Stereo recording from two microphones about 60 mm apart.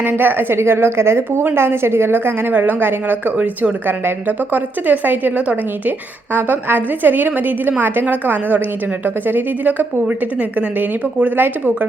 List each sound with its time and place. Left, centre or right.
0.0 s a woman's voice: right